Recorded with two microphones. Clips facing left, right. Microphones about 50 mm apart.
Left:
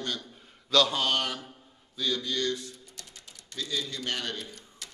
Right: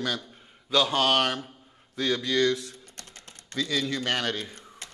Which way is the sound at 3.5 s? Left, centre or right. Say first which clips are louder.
Right 6 dB; right.